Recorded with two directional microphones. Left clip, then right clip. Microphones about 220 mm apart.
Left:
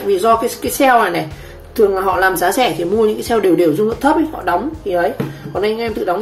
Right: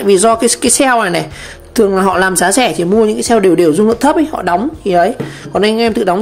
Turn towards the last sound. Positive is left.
turn(degrees=-40)  # may be behind; listen again after turning